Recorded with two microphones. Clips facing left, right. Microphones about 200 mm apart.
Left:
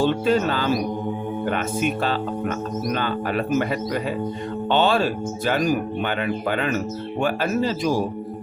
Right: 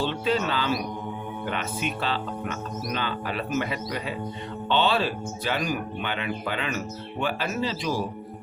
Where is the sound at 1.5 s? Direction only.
45° left (ahead or behind).